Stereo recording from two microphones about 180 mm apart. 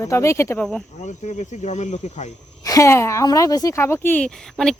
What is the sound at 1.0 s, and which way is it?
Speech, 40° left (ahead or behind).